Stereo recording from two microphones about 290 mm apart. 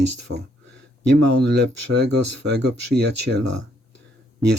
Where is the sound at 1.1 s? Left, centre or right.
Right.